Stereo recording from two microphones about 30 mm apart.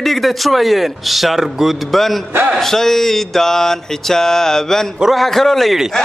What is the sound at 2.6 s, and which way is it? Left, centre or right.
Mantra, centre.